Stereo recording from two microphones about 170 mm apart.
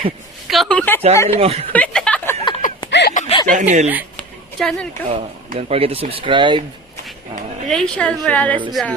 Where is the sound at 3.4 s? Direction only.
50° right (ahead or behind).